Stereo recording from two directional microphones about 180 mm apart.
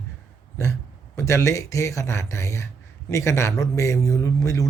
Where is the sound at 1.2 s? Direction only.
15° left (ahead or behind).